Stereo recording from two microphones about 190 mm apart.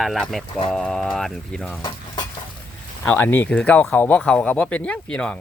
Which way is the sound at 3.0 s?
10° left (ahead or behind).